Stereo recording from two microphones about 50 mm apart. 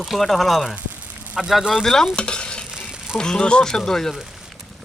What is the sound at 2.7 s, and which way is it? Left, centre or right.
Music, centre.